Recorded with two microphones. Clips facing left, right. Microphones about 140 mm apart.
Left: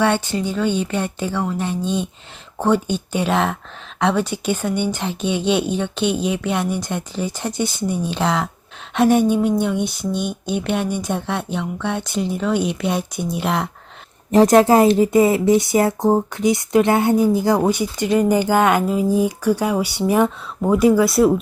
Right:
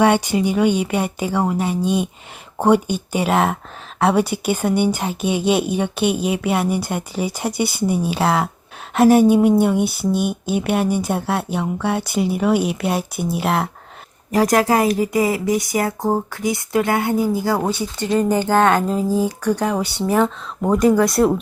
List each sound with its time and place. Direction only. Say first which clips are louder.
0.0 s a woman's voice: right 3 dB; 10° right (ahead or behind)
14.3 s speech: left 4 dB; 25° left (ahead or behind)
16.0 s speech: left 3 dB; centre (ahead or behind)
16.4 s speech: left 4 dB; 20° left (ahead or behind); by 21.3 s centre (ahead or behind)